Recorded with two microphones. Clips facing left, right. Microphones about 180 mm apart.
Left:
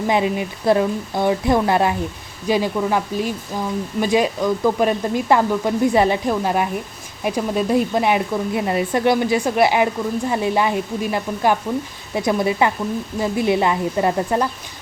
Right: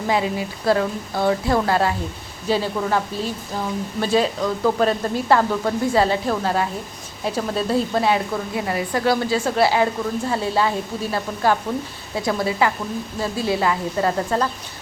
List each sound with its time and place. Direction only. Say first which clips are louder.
0.1 s speech: left 1 dB; 20° left (ahead or behind)